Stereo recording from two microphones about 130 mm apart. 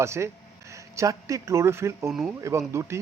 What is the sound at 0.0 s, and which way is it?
Speech, 20° right (ahead or behind).